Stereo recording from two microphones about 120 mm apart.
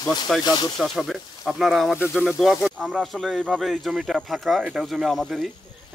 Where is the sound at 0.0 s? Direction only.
35° left (ahead or behind).